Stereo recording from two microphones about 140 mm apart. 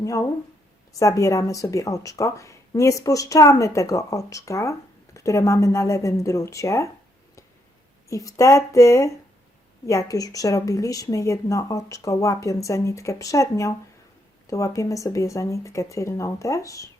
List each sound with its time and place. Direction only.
0.0 s speech: 25° left (ahead or behind)
8.1 s speech: 25° left (ahead or behind)